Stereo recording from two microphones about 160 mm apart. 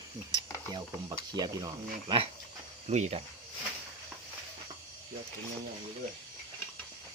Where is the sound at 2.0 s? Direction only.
35° right (ahead or behind).